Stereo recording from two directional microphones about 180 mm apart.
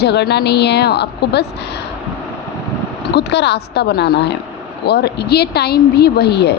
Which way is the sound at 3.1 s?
70° left (ahead or behind).